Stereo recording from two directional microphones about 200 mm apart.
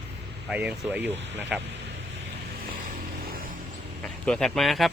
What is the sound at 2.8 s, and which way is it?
Vehicle, 45° right (ahead or behind).